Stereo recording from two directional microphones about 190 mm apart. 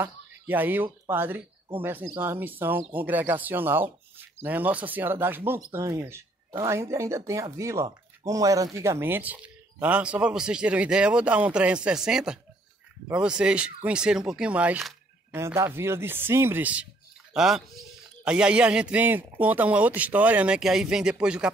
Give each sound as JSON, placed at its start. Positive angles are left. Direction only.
{"t": 0.0, "sound": "a man's voice", "side_deg": -10}
{"t": 15.3, "sound": "a man's voice", "side_deg": -15}